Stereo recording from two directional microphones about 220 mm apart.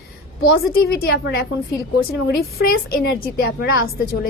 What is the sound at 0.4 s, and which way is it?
A woman's voice, 45° left (ahead or behind).